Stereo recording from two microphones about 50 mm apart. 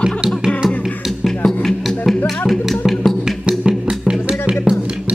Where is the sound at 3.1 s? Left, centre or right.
Centre.